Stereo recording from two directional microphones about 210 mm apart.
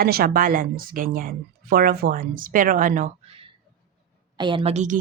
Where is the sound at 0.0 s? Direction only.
45° right (ahead or behind).